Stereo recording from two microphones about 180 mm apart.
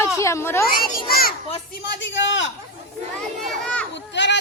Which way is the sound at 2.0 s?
90° left.